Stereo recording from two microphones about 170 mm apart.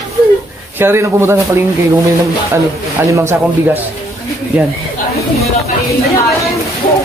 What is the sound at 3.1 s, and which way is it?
Speech, 15° right (ahead or behind).